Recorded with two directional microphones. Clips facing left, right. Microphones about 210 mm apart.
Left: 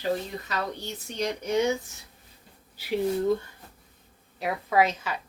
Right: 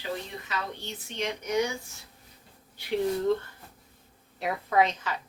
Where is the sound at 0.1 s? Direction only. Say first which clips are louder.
Left 4 dB; 40° left (ahead or behind).